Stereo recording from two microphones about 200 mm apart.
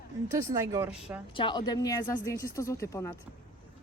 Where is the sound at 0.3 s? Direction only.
15° right (ahead or behind).